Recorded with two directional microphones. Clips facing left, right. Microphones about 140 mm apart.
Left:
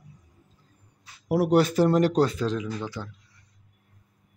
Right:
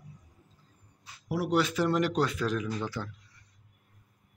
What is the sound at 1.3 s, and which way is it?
Speech, 50° left (ahead or behind).